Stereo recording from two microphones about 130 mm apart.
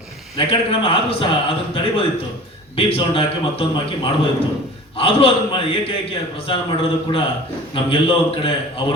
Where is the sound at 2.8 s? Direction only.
45° left (ahead or behind).